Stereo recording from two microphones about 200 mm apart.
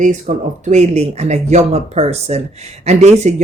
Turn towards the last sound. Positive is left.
turn(degrees=-35)  # may be behind; listen again after turning